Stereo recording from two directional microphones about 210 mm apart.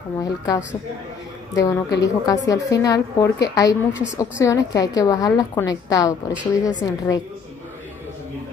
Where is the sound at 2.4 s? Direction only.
15° left (ahead or behind).